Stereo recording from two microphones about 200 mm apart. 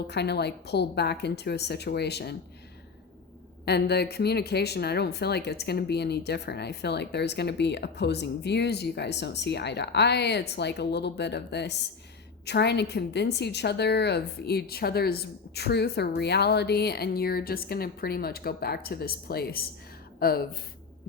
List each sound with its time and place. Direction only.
0.1 s speech: 55° left (ahead or behind)
3.7 s a woman's voice: 55° left (ahead or behind)